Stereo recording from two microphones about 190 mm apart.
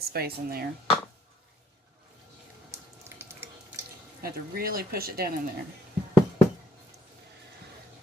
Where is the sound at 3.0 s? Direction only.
10° right (ahead or behind).